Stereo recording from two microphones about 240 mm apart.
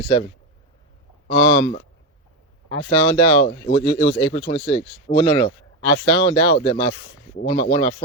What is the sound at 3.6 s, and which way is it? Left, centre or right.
Speech, left.